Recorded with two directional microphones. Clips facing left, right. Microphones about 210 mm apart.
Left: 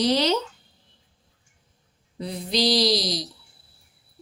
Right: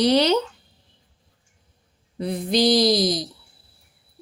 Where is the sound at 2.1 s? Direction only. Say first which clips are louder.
Right 5 dB; 55° right (ahead or behind).